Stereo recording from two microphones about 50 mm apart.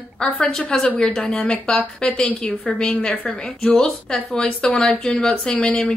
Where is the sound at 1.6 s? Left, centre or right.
Centre.